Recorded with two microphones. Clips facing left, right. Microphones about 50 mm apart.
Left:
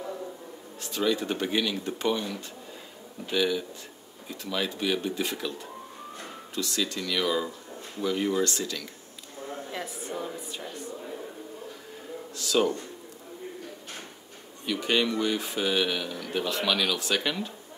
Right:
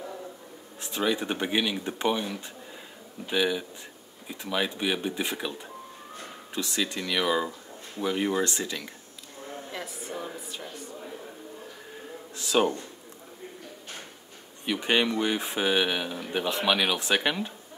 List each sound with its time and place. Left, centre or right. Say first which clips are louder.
0.8 s speech: even; right
9.7 s a woman's voice: left 2 dB; centre
12.4 s speech: right 1 dB; right
14.7 s speech: right 1 dB; right